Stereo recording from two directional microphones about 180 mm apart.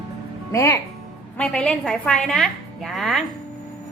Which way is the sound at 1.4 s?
5° left (ahead or behind).